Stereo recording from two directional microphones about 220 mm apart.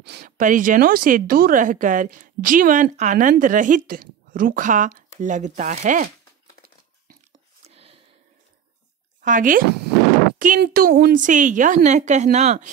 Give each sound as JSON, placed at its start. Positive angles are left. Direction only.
{"t": 0.0, "sound": "speech", "side_deg": -45}
{"t": 7.6, "sound": "a sound", "side_deg": -25}
{"t": 9.2, "sound": "speech", "side_deg": -35}